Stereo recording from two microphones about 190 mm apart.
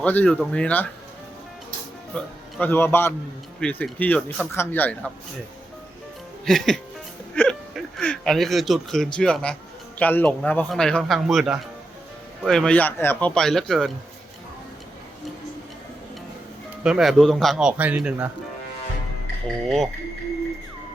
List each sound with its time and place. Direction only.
0.0 s speech: 10° left (ahead or behind)
2.1 s a man's voice: 10° left (ahead or behind)
6.4 s speech: centre (ahead or behind)
7.9 s speech: 5° left (ahead or behind)
16.8 s speech: 5° right (ahead or behind)
19.6 s speech: centre (ahead or behind)